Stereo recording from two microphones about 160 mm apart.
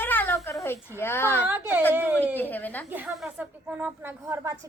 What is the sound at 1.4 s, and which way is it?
Speech, 10° right (ahead or behind).